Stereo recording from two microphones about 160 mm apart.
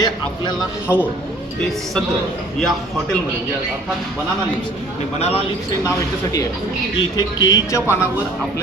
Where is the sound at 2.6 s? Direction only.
5° left (ahead or behind).